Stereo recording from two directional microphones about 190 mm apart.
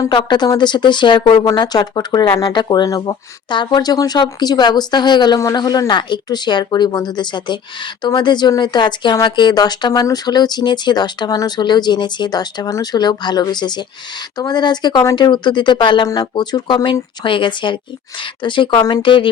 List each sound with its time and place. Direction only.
0.0 s speech: 25° left (ahead or behind)